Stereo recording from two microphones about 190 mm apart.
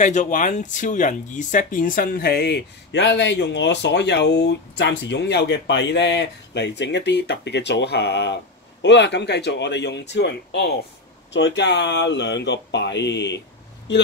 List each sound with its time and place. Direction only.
0.0 s speech: 40° left (ahead or behind); by 13.4 s 65° left (ahead or behind)